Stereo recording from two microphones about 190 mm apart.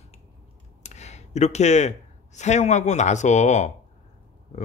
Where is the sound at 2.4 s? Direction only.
40° left (ahead or behind).